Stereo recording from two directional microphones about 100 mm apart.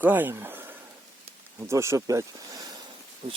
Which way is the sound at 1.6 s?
30° right (ahead or behind).